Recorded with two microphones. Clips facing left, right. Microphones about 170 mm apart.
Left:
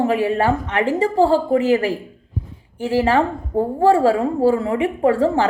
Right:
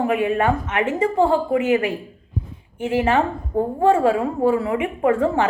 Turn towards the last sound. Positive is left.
turn(degrees=30)  # may be behind; listen again after turning